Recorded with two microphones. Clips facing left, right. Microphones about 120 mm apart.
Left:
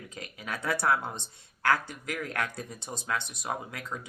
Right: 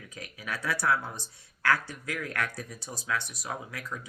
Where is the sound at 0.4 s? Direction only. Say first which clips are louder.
Left 1 dB; 25° left (ahead or behind).